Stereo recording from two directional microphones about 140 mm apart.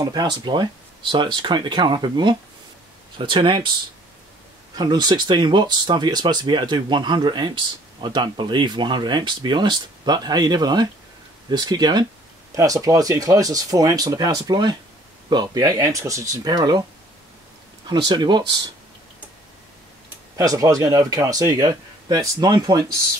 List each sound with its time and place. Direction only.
0.0 s speech: 30° right (ahead or behind)
4.7 s speech: 30° right (ahead or behind)
17.8 s speech: 30° right (ahead or behind)
20.3 s speech: 25° right (ahead or behind)